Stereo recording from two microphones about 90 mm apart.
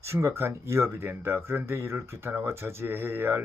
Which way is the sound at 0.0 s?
30° right (ahead or behind).